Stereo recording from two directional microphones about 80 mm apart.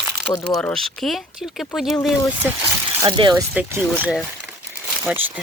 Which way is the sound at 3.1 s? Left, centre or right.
Right.